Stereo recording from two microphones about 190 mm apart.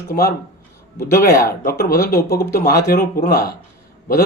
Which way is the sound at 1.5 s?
55° left (ahead or behind).